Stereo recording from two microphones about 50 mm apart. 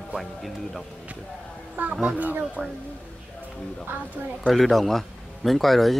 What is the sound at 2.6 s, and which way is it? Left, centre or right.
Speech, right.